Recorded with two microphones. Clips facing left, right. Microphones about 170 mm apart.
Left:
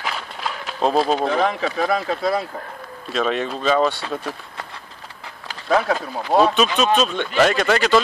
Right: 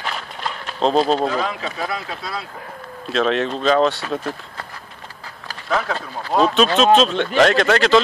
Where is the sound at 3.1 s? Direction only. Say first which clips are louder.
Right 3 dB; 5° left (ahead or behind).